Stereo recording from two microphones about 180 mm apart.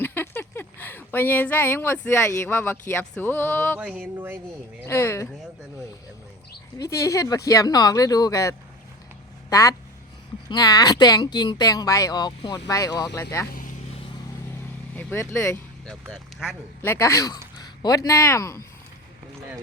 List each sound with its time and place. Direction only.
0.0 s speech: 10° left (ahead or behind)
3.8 s music: 5° right (ahead or behind)
4.9 s speech: 15° left (ahead or behind)
6.7 s speech: 20° left (ahead or behind)
13.5 s vehicle: 50° left (ahead or behind)
14.9 s speech: 15° left (ahead or behind)
15.9 s speech: centre (ahead or behind)
16.8 s speech: 15° left (ahead or behind)
19.4 s clip-clop: 15° right (ahead or behind)